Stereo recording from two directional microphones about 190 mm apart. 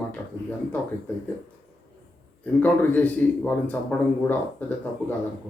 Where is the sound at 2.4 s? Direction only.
10° left (ahead or behind).